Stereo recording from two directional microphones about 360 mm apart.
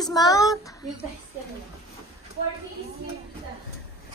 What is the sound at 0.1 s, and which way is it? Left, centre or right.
Speech, centre.